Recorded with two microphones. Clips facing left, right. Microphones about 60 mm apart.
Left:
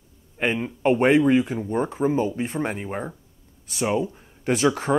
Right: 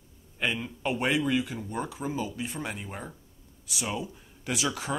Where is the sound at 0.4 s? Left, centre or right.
Left.